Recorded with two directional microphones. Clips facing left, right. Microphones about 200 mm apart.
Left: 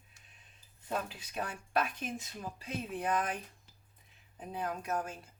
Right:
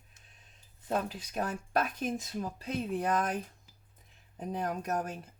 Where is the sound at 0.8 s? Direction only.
45° right (ahead or behind).